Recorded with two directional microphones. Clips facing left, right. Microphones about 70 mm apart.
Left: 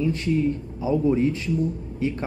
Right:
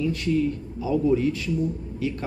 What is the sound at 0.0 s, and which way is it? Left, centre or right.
Speech, left.